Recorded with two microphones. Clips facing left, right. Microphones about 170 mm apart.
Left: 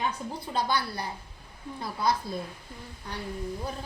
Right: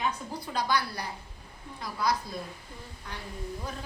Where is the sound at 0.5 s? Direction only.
25° left (ahead or behind).